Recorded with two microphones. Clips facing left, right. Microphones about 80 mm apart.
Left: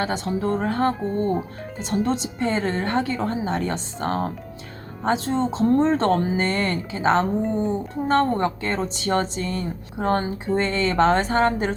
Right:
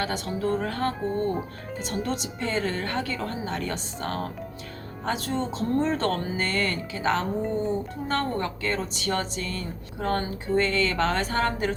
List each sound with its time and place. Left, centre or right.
0.0 s speech: left
1.2 s speech: centre
1.8 s speech: left